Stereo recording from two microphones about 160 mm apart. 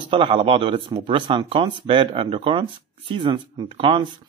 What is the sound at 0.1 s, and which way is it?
Speech, 30° right (ahead or behind).